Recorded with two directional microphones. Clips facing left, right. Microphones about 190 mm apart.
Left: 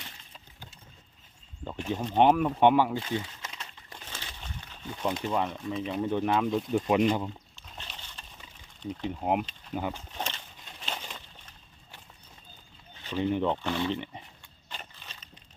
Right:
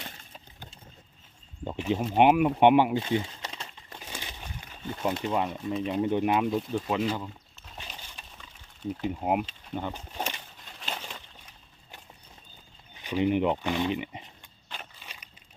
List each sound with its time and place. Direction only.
2.0 s speech: 10° right (ahead or behind); by 3.7 s 30° right (ahead or behind)
4.0 s crumpling: 15° right (ahead or behind)
5.9 s speech: 15° right (ahead or behind)
6.7 s speech: 15° left (ahead or behind)
7.5 s rowboat: 5° right (ahead or behind)
8.8 s speech: 5° right (ahead or behind)
9.9 s bird: 10° right (ahead or behind)
10.8 s a sound: 5° right (ahead or behind)
13.0 s speech: 15° right (ahead or behind)
14.7 s crushing: 10° right (ahead or behind)